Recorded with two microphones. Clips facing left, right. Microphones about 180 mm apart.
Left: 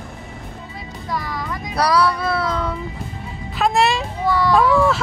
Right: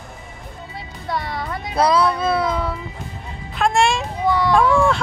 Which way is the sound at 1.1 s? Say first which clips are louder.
Right 1 dB; 30° right (ahead or behind).